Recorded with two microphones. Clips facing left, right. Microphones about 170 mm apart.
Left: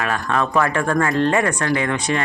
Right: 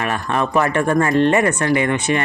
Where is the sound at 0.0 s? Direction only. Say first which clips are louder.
Right 1 dB; 15° right (ahead or behind).